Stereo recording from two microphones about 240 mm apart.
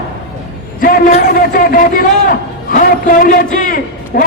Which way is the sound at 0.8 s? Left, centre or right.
Left.